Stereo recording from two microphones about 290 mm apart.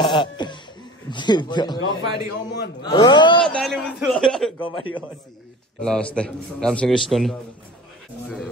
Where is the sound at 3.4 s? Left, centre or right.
Centre.